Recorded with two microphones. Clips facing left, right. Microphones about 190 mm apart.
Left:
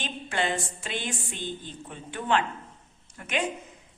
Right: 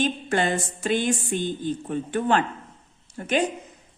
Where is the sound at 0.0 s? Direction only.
45° right (ahead or behind).